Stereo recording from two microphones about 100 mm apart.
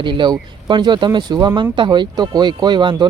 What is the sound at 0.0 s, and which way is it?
Speech, 55° right (ahead or behind).